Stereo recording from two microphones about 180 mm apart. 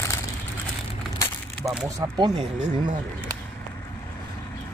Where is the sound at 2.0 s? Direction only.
20° right (ahead or behind).